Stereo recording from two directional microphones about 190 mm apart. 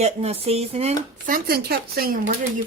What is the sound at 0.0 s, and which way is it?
Speech, 35° right (ahead or behind).